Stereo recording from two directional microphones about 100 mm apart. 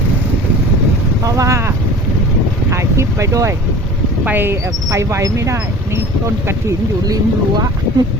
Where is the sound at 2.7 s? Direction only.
30° right (ahead or behind).